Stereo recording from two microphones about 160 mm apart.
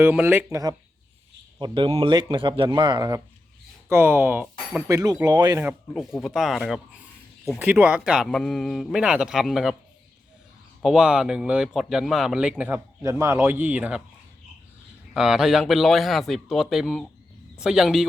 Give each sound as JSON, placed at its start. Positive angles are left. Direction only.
{"t": 0.0, "sound": "speech", "side_deg": -10}
{"t": 3.8, "sound": "speech", "side_deg": -15}
{"t": 4.9, "sound": "speech", "side_deg": -20}
{"t": 5.9, "sound": "a man's voice", "side_deg": 0}
{"t": 10.8, "sound": "a man's voice", "side_deg": -5}
{"t": 15.1, "sound": "a man's voice", "side_deg": -5}